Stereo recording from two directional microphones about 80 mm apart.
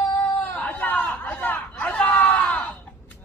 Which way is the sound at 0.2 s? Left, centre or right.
Left.